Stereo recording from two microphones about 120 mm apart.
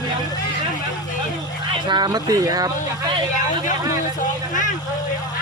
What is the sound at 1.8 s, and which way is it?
Speech, 40° right (ahead or behind).